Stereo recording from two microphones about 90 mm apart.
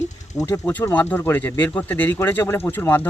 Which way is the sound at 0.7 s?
20° left (ahead or behind).